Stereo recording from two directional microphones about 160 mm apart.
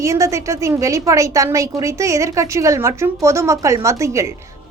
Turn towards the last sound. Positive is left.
turn(degrees=-20)  # may be behind; listen again after turning